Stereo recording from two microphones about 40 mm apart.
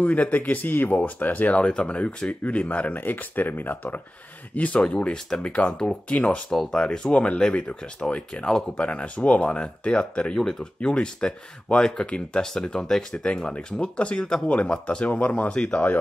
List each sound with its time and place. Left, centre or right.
0.0 s speech: left
1.7 s speech: left
2.9 s speech: left
4.6 s speech: left
6.7 s speech: centre
7.2 s speech: left
10.4 s speech: centre
10.8 s speech: left
12.4 s speech: centre
13.2 s speech: left
15.0 s speech: left